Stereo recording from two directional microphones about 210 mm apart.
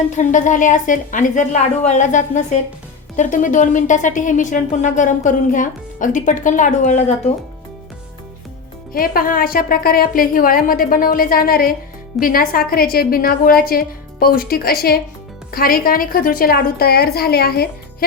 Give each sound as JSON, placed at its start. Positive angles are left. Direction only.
{"t": 0.2, "sound": "a woman's voice", "side_deg": 35}
{"t": 8.9, "sound": "a woman's voice", "side_deg": 45}